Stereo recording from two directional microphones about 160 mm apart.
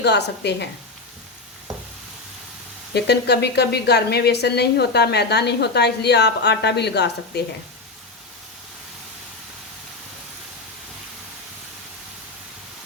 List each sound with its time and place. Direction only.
0.0 s speech: 90° left
2.9 s speech: 90° left